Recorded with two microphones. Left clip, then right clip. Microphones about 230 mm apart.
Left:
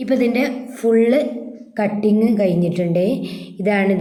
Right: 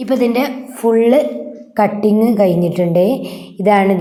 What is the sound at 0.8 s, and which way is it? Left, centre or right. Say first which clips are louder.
Speech: right 3 dB; right.